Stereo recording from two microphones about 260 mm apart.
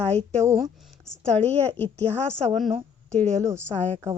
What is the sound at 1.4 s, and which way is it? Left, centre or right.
Speech, right.